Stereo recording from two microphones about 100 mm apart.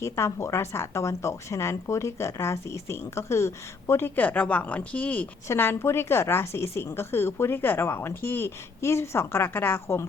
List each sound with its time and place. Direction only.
0.0 s speech: 30° left (ahead or behind)